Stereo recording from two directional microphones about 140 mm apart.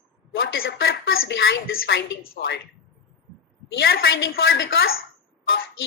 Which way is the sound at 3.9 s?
90° left.